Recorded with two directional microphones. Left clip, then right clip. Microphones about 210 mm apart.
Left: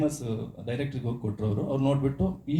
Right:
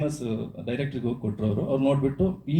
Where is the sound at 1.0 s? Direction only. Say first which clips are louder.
Right 4 dB; 40° right (ahead or behind).